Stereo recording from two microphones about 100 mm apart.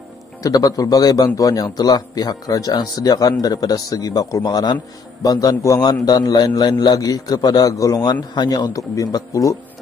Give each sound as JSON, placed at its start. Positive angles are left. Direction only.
{"t": 0.4, "sound": "a man's voice", "side_deg": 40}